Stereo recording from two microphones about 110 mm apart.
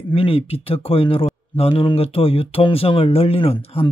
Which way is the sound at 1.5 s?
65° left (ahead or behind).